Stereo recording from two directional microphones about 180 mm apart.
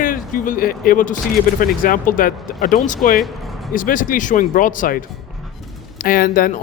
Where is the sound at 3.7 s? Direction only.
50° left (ahead or behind).